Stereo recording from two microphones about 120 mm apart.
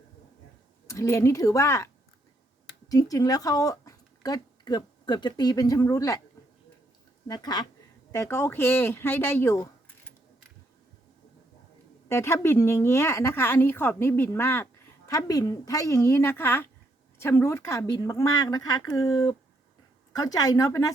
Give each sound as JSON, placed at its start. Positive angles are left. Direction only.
{"t": 0.9, "sound": "speech", "side_deg": 25}
{"t": 2.9, "sound": "speech", "side_deg": 30}
{"t": 7.3, "sound": "speech", "side_deg": 30}
{"t": 8.1, "sound": "speech", "side_deg": 20}
{"t": 12.0, "sound": "speech", "side_deg": 20}